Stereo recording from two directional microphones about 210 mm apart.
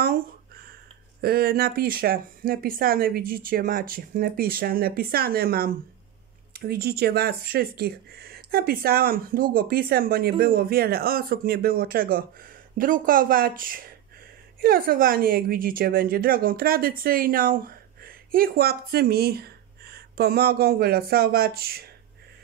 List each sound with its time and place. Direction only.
1.2 s speech: 45° right (ahead or behind)